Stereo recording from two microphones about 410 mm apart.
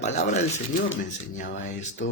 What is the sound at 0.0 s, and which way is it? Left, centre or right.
Speech, centre.